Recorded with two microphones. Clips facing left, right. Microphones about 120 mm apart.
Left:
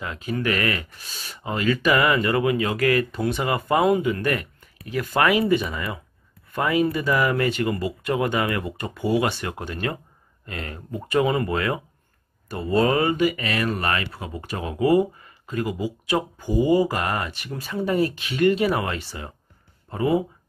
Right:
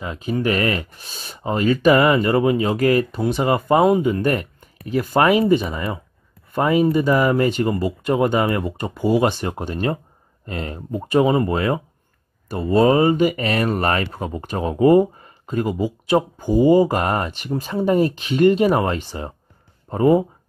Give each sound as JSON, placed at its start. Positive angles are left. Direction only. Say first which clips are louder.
{"t": 0.0, "sound": "speech", "louder": "right 4 dB", "side_deg": -15}
{"t": 0.4, "sound": "speech", "louder": "right 4 dB", "side_deg": -30}